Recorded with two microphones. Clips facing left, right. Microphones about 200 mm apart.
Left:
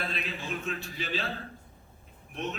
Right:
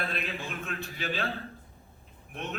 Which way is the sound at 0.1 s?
55° right (ahead or behind).